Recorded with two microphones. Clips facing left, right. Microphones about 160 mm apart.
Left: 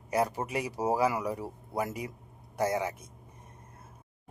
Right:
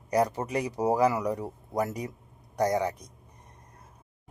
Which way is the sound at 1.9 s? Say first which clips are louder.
Right 3 dB; 40° right (ahead or behind).